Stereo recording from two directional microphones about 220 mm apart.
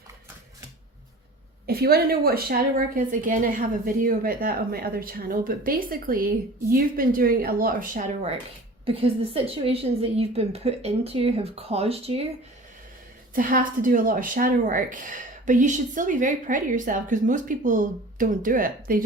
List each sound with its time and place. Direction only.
1.6 s a woman's voice: 45° right (ahead or behind); by 12.3 s 25° right (ahead or behind)
13.3 s a woman's voice: 40° right (ahead or behind)